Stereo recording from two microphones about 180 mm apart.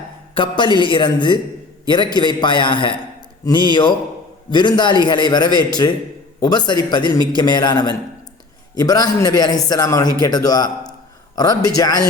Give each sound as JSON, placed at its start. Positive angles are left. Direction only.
{"t": 0.3, "sound": "a man's voice", "side_deg": 25}